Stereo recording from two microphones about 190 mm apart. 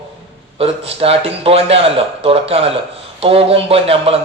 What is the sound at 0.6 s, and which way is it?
A man's voice, 30° right (ahead or behind).